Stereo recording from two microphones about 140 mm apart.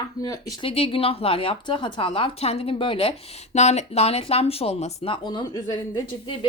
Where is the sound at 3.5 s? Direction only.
55° left (ahead or behind).